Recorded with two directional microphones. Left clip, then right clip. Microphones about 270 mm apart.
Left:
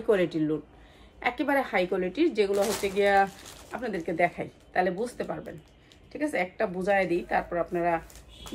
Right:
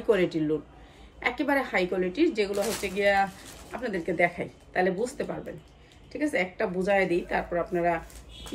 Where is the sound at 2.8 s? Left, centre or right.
Centre.